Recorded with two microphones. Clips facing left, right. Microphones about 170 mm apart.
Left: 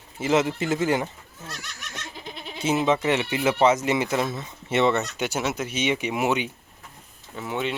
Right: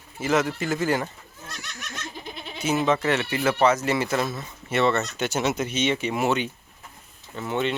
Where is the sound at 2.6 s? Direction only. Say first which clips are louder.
Left 1 dB; 25° left (ahead or behind).